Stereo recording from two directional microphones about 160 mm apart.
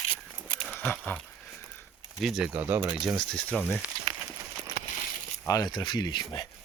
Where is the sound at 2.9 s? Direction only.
Centre (ahead or behind).